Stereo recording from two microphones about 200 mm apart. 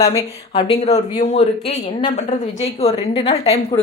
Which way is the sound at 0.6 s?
30° left (ahead or behind).